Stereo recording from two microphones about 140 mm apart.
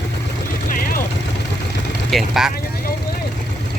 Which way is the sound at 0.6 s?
80° left.